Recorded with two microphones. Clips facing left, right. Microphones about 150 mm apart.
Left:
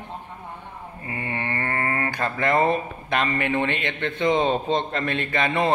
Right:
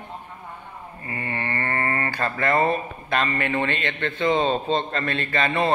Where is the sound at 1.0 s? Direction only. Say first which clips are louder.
Even; 15° left (ahead or behind).